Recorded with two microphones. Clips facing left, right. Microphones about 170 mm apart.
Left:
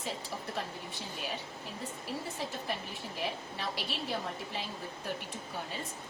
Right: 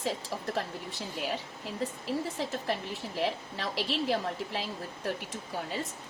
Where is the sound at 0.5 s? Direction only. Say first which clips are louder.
Right 4 dB; 85° right.